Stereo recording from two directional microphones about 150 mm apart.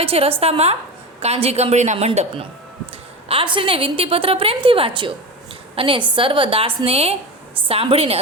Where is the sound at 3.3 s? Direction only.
35° right (ahead or behind).